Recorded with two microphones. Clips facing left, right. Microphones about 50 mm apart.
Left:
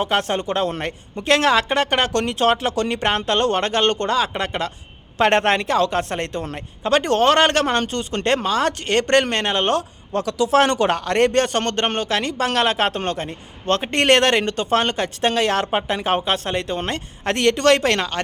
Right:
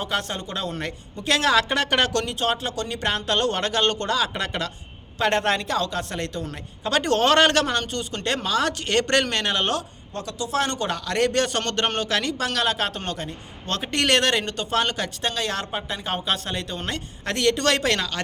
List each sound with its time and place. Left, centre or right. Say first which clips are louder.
0.0 s speech: left 7 dB; left
1.5 s a woman's voice: left 3 dB; left
2.4 s a woman's voice: left 7 dB; left
5.1 s speech: left 5 dB; left
6.8 s a woman's voice: left 4 dB; left
7.7 s speech: left 5 dB; left
10.1 s speech: left 10 dB; left
10.9 s speech: left 5 dB; left
12.4 s speech: left 5 dB; left
15.2 s speech: left 10 dB; left